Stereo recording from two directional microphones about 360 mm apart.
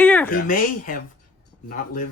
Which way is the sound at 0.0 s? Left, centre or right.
Centre.